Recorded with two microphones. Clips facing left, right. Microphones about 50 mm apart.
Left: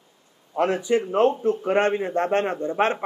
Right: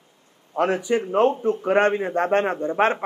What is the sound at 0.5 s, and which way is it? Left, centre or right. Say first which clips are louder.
Speech: even; right.